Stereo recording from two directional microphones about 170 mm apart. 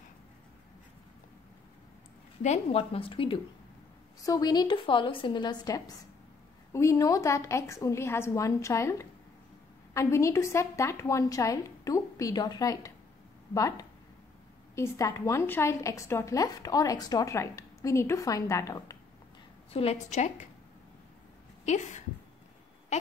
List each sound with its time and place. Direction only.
2.4 s a woman's voice: 40° left (ahead or behind); by 18.9 s 20° left (ahead or behind)
19.7 s a woman's voice: 35° left (ahead or behind)
21.6 s speech: 45° left (ahead or behind)